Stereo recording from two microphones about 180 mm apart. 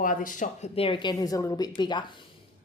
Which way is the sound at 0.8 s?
30° left (ahead or behind).